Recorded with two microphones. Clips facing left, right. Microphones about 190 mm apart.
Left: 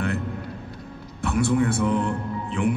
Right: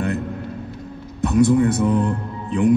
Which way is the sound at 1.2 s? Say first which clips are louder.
Right 6 dB; 20° right (ahead or behind).